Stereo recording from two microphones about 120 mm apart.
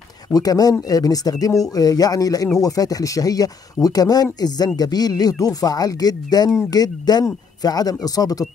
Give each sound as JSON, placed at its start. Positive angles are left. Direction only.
{"t": 0.3, "sound": "speech", "side_deg": 30}